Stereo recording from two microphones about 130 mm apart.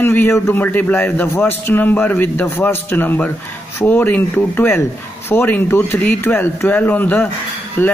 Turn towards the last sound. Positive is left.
turn(degrees=15)  # may be behind; listen again after turning